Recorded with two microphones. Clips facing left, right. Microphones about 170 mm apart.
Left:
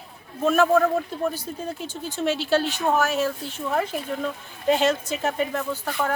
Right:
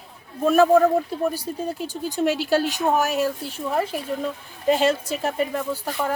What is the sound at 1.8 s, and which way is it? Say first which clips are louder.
Speech: right 4 dB; 40° right (ahead or behind).